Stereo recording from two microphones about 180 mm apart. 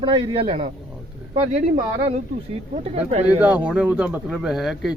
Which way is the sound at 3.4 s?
5° right (ahead or behind).